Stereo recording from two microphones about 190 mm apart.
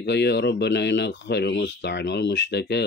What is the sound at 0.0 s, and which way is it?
Speech, 65° left (ahead or behind).